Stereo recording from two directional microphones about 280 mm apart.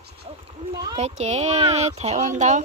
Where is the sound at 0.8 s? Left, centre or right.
Centre.